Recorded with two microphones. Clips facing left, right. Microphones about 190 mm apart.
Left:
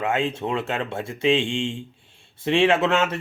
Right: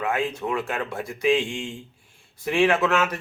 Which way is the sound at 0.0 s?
25° left (ahead or behind).